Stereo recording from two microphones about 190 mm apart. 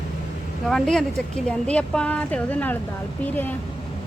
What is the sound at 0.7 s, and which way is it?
A woman's voice, centre (ahead or behind).